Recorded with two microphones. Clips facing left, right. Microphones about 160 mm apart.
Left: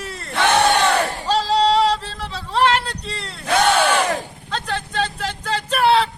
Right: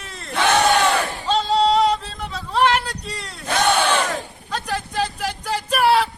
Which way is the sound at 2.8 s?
30° left (ahead or behind).